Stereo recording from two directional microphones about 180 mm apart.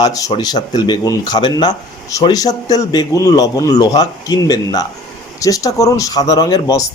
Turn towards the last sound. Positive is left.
turn(degrees=20)  # may be behind; listen again after turning